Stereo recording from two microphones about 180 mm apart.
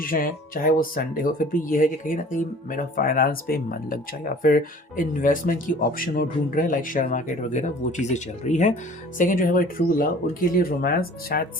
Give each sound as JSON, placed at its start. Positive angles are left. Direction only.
{"t": 0.0, "sound": "speech", "side_deg": 50}